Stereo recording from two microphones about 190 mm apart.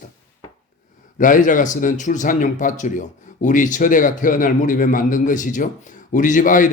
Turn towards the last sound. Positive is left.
turn(degrees=45)  # may be behind; listen again after turning